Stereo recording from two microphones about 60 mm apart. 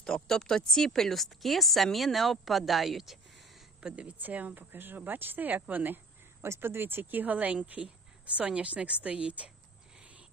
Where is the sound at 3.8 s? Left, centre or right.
Right.